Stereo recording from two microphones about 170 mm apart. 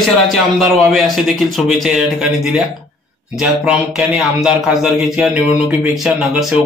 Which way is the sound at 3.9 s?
5° right (ahead or behind).